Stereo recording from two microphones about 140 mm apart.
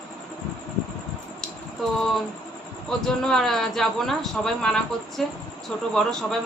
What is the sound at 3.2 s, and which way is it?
Speech, centre (ahead or behind).